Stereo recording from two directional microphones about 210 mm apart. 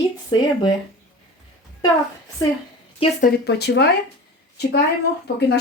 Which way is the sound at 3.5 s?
55° left (ahead or behind).